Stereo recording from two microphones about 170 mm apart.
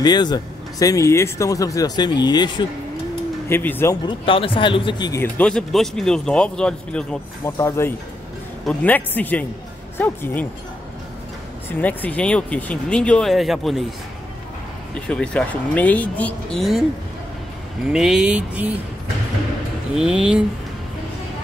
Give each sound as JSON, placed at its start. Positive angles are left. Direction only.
{"t": 0.0, "sound": "speech", "side_deg": 25}
{"t": 3.4, "sound": "speech", "side_deg": 10}
{"t": 5.2, "sound": "speech", "side_deg": 5}
{"t": 7.4, "sound": "speech", "side_deg": 15}
{"t": 11.8, "sound": "speech", "side_deg": 10}
{"t": 15.0, "sound": "speech", "side_deg": 5}
{"t": 17.9, "sound": "speech", "side_deg": -5}
{"t": 20.0, "sound": "speech", "side_deg": -5}